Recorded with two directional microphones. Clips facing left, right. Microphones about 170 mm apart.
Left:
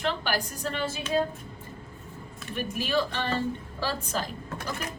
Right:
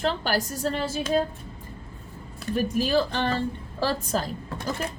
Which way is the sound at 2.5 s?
35° right (ahead or behind).